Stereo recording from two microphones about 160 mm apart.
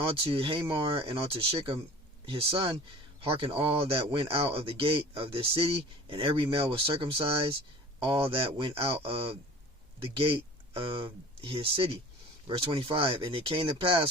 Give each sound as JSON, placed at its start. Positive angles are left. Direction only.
{"t": 0.0, "sound": "speech", "side_deg": -35}